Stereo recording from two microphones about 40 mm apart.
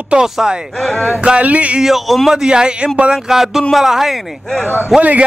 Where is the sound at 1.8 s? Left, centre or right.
Centre.